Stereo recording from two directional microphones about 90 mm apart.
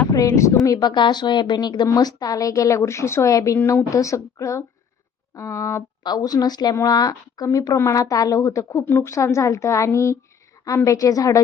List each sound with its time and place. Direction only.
0.1 s speech: 40° left (ahead or behind)
0.6 s a woman's voice: 45° left (ahead or behind)
6.0 s a woman's voice: 50° left (ahead or behind)